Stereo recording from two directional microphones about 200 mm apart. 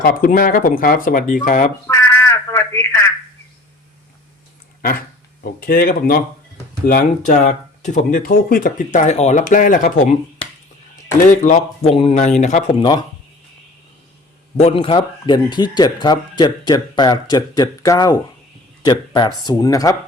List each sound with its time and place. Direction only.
0.0 s speech: 45° left (ahead or behind)
1.9 s a sound: 10° left (ahead or behind)
4.8 s speech: 50° left (ahead or behind)
11.3 s speech: 35° left (ahead or behind)
12.8 s speech: 20° left (ahead or behind)
14.5 s speech: 30° left (ahead or behind)